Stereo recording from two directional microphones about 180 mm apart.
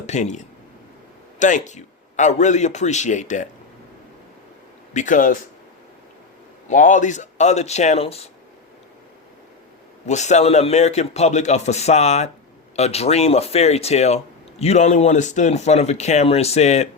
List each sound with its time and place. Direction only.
0.0 s a man's voice: 40° left (ahead or behind)
4.9 s speech: 45° left (ahead or behind)
6.7 s a man's voice: 45° left (ahead or behind)
10.1 s a man's voice: 40° left (ahead or behind)